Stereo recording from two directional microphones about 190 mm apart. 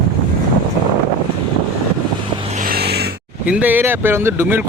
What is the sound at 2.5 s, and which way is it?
Vehicle, 45° right (ahead or behind).